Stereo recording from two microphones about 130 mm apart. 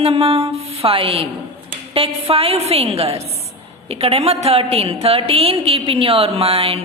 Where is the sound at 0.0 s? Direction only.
50° right (ahead or behind).